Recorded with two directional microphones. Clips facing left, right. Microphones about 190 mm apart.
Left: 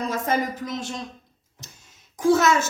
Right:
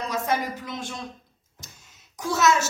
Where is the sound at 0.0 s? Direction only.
50° left (ahead or behind).